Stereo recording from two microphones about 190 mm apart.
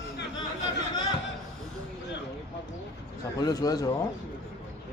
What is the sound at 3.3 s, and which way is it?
Speech, 20° left (ahead or behind).